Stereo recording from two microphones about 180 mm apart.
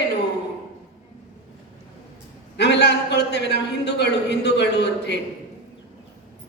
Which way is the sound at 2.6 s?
70° left (ahead or behind).